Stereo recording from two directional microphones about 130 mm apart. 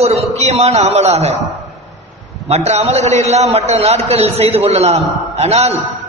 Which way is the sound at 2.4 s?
55° right (ahead or behind).